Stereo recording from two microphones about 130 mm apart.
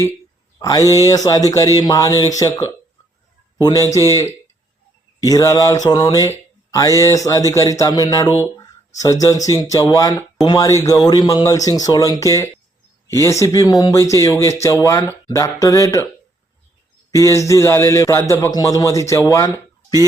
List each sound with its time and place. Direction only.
0.6 s a man's voice: 25° left (ahead or behind)
5.2 s a man's voice: 25° left (ahead or behind)
17.2 s a man's voice: 25° left (ahead or behind)